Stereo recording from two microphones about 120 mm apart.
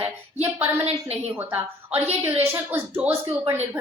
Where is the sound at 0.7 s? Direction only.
55° right (ahead or behind).